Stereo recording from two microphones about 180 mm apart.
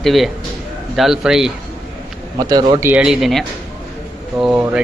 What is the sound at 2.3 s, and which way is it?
Speech, 20° right (ahead or behind).